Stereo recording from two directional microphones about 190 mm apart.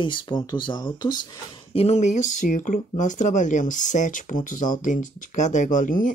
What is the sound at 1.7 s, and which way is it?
Speech, 35° left (ahead or behind).